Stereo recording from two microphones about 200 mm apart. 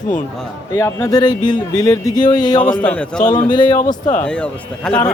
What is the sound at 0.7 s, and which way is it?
Speech, 15° left (ahead or behind).